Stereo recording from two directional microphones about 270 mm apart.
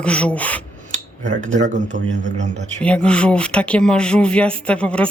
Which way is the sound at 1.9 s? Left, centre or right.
Right.